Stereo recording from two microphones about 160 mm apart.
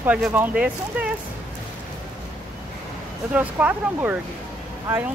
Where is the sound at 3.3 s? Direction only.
10° right (ahead or behind).